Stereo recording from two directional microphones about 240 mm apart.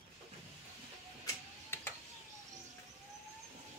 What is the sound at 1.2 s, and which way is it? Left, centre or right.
Printer, centre.